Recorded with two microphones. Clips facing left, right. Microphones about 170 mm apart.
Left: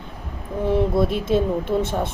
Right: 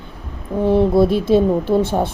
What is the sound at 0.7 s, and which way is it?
Speech, 35° right (ahead or behind).